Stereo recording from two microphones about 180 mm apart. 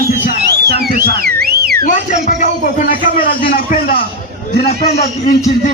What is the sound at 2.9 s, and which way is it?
A man's voice, 50° left (ahead or behind).